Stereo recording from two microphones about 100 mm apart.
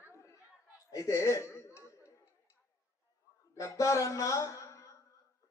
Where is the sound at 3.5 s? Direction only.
35° left (ahead or behind).